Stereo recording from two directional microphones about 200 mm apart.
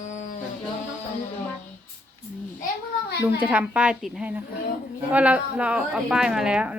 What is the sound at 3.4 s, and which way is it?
A woman's voice, 10° right (ahead or behind).